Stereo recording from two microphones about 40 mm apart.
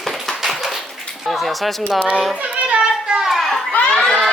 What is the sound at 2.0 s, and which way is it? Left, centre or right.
Speech, right.